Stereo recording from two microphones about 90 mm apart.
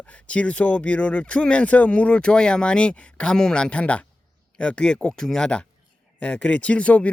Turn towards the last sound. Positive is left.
turn(degrees=15)  # may be behind; listen again after turning